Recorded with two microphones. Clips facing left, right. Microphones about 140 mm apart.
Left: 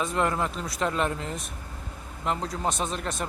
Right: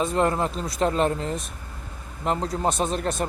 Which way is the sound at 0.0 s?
30° right (ahead or behind).